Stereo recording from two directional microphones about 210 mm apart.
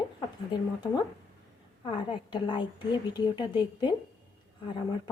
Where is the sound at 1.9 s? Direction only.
20° left (ahead or behind).